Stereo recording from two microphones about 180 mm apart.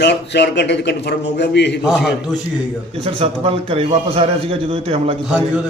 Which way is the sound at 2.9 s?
30° right (ahead or behind).